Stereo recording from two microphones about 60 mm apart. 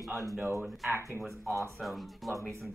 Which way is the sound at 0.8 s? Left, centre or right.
Right.